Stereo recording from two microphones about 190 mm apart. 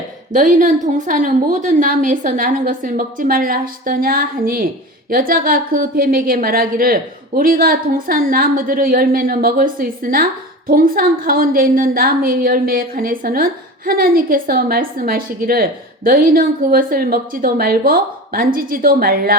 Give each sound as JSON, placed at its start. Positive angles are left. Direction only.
{"t": 0.3, "sound": "a woman's voice", "side_deg": -45}